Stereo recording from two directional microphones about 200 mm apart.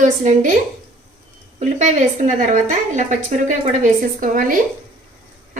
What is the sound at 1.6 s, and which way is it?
A woman's voice, 35° right (ahead or behind).